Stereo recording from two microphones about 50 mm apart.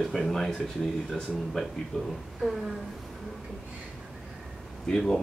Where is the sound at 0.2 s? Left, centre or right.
Centre.